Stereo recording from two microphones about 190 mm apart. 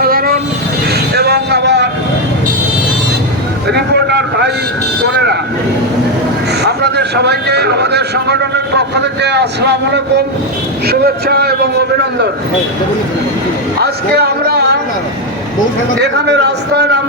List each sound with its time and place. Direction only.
0.0 s train: 50° right (ahead or behind)
1.1 s a sound: 60° right (ahead or behind)
3.7 s vehicle: 60° right (ahead or behind)
6.6 s a man's voice: 60° right (ahead or behind)
14.2 s speech: 60° right (ahead or behind)
16.0 s a man's voice: 65° right (ahead or behind)